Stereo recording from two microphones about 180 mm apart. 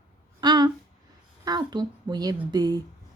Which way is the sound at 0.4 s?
20° right (ahead or behind).